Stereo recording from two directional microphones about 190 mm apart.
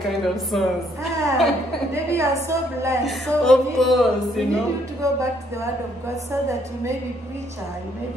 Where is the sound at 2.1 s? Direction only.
15° right (ahead or behind).